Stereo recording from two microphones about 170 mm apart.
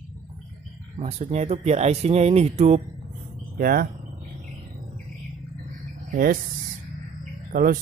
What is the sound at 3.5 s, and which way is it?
Speech, 60° right (ahead or behind).